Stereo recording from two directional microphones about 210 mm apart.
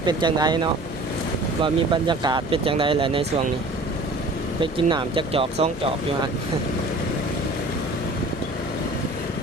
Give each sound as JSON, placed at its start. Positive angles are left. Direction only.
{"t": 0.0, "sound": "speech", "side_deg": -20}
{"t": 4.6, "sound": "speech", "side_deg": -20}